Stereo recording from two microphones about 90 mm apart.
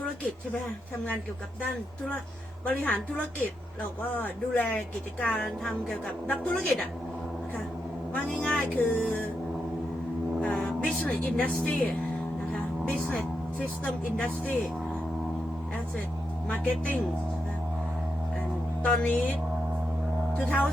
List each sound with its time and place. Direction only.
2.6 s a woman's voice: 20° left (ahead or behind)
8.1 s a woman's voice: 10° left (ahead or behind)
10.4 s a woman's voice: 10° left (ahead or behind)
12.9 s a woman's voice: 10° left (ahead or behind)
18.8 s a woman's voice: 15° left (ahead or behind)